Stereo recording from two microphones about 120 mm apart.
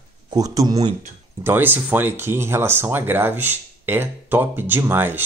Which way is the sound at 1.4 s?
15° right (ahead or behind).